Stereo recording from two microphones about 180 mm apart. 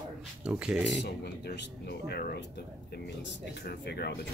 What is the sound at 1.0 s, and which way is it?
Speech, 65° left (ahead or behind).